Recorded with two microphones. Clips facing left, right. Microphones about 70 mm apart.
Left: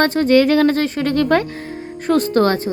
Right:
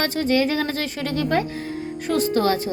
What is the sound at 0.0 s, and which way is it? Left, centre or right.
Speech, left.